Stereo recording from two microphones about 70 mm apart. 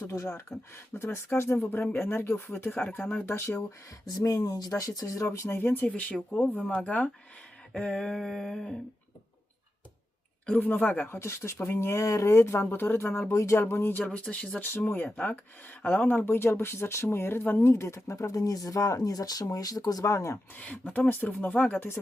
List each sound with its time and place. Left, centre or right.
0.0 s speech: left
0.9 s speech: left
4.2 s speech: left
5.5 s speech: left
5.9 s speech: centre
7.7 s a sound: centre
10.4 s speech: left
12.7 s speech: left
13.2 s speech: left
14.2 s a sound: centre
14.8 s speech: left
17.6 s speech: left
20.6 s speech: left